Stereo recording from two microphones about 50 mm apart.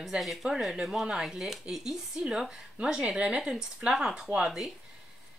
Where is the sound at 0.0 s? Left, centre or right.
Centre.